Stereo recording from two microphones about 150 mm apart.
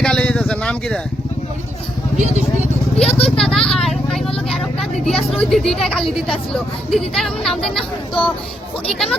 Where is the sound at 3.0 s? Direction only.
40° left (ahead or behind).